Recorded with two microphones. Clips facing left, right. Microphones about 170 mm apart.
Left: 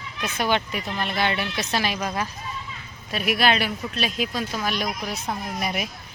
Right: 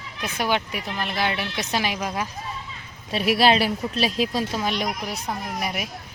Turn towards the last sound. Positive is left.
turn(degrees=-5)  # may be behind; listen again after turning